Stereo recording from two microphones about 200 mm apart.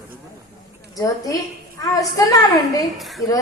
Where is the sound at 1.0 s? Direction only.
15° left (ahead or behind).